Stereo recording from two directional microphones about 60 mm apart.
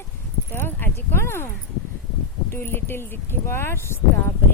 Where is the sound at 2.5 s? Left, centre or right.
Left.